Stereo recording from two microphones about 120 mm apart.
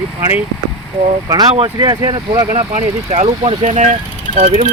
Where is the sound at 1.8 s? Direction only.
35° right (ahead or behind).